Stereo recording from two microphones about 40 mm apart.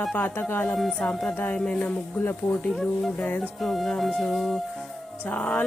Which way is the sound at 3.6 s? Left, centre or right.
Centre.